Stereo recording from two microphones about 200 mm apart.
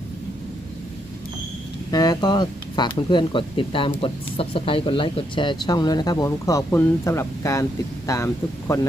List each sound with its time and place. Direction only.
1.9 s speech: 20° left (ahead or behind)